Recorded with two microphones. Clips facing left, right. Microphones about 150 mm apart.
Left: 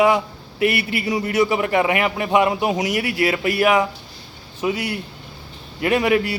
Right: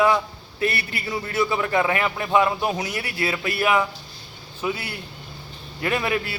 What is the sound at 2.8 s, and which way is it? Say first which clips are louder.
Speech: left 7 dB; 90° left.